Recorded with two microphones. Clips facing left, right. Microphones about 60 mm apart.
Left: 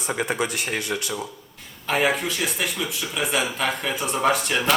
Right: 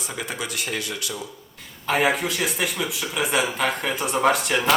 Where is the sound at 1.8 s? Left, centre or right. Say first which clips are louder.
Right 1 dB; centre.